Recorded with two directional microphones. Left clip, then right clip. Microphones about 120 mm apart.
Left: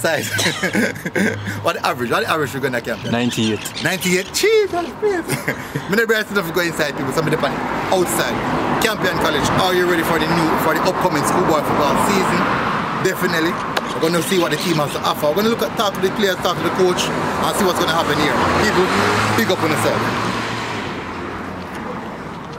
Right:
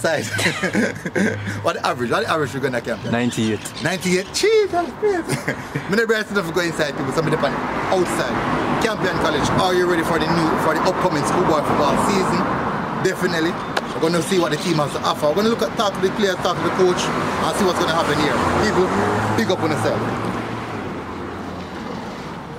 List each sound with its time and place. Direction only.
0.0 s speech: 5° left (ahead or behind)
18.7 s speech: 40° left (ahead or behind)
19.3 s speech: centre (ahead or behind)
19.7 s speech: 40° left (ahead or behind)